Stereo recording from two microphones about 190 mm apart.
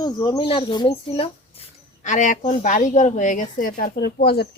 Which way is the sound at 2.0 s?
40° left (ahead or behind).